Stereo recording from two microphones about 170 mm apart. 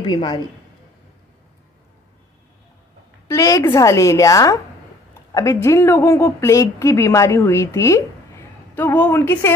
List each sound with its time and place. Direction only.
0.0 s a woman's voice: 25° left (ahead or behind)
3.3 s a woman's voice: 20° left (ahead or behind)